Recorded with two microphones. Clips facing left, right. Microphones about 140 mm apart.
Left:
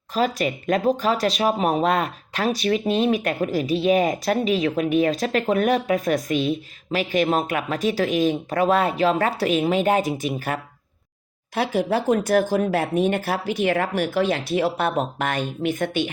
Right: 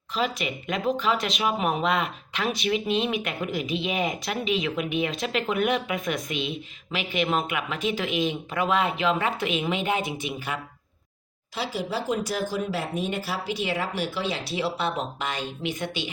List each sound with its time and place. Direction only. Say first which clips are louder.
0.1 s speech: left 6 dB; 45° left (ahead or behind)
11.5 s speech: left 8 dB; 55° left (ahead or behind)